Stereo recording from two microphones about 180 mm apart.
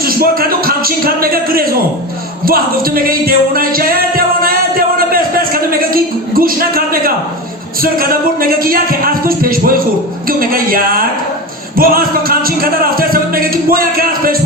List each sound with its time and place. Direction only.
0.0 s a man's voice: 55° right (ahead or behind)
4.9 s a sound: 55° right (ahead or behind)
7.8 s speech: 55° right (ahead or behind)